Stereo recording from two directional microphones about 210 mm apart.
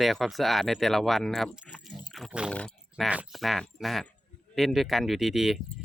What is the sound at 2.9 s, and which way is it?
Speech, 5° right (ahead or behind).